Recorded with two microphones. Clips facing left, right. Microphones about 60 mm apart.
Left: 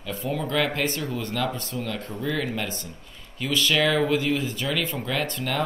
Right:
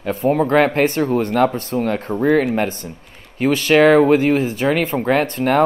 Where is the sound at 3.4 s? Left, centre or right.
Right.